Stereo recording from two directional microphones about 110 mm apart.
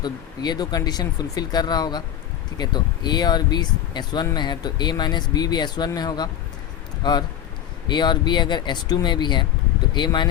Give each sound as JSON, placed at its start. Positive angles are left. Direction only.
{"t": 0.0, "sound": "speech", "side_deg": 40}